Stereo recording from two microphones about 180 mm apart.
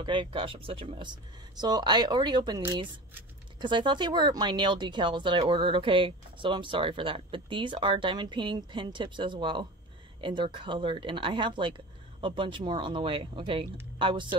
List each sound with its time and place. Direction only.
0.0 s speech: 25° right (ahead or behind)
3.6 s speech: 25° right (ahead or behind)